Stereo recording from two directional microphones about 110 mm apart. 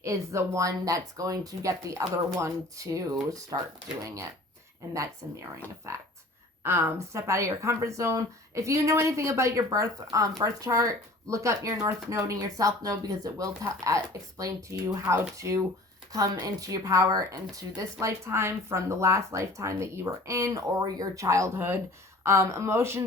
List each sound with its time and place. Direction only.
0.0 s a woman's voice: 25° right (ahead or behind)
5.9 s a woman's voice: 25° right (ahead or behind)